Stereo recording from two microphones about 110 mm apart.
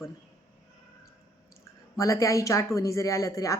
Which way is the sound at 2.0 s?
30° left (ahead or behind).